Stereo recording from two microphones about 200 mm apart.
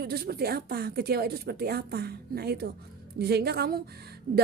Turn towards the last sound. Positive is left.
turn(degrees=-45)  # may be behind; listen again after turning